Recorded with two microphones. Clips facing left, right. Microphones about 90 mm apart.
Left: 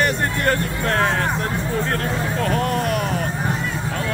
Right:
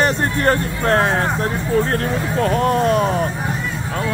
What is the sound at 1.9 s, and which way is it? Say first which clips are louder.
Speech: right 3 dB; 30° right (ahead or behind).